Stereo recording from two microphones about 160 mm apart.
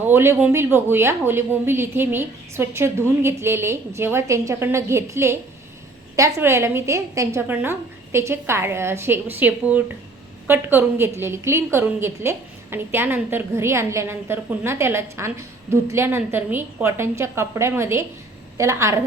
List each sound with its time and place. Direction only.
0.0 s a woman's voice: 15° right (ahead or behind)